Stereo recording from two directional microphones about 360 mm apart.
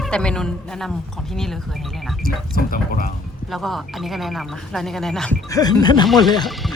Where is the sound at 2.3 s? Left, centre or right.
Left.